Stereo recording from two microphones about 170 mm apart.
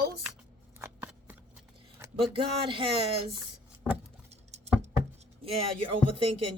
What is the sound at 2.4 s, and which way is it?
Speech, 30° right (ahead or behind).